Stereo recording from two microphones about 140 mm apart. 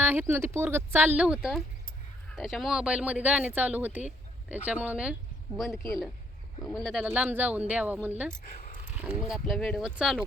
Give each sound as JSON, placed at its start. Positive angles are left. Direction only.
{"t": 0.0, "sound": "speech", "side_deg": -15}
{"t": 7.0, "sound": "speech", "side_deg": -10}
{"t": 8.4, "sound": "a sound", "side_deg": 90}
{"t": 9.2, "sound": "speech", "side_deg": 0}